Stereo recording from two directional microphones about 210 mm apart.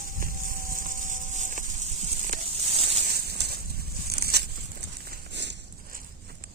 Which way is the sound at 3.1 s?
50° right (ahead or behind).